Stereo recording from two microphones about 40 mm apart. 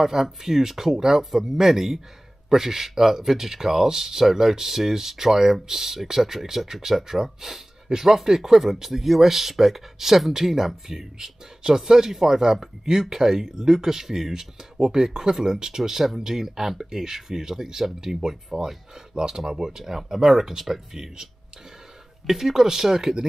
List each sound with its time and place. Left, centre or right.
0.0 s speech: centre
22.3 s speech: centre